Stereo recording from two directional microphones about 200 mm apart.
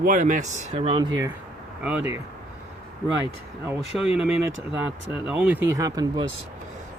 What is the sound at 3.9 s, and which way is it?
Speech, centre (ahead or behind).